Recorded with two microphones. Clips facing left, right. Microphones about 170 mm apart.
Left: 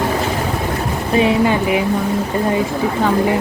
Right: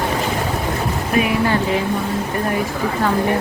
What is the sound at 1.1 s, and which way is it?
Speech, 20° left (ahead or behind).